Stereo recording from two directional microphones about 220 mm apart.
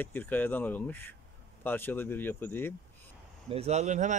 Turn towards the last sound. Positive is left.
turn(degrees=-35)  # may be behind; listen again after turning